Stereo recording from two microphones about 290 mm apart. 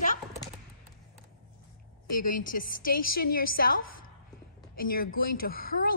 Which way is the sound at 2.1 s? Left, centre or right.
Left.